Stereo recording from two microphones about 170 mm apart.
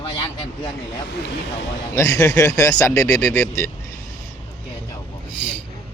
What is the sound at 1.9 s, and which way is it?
A man's voice, 20° left (ahead or behind).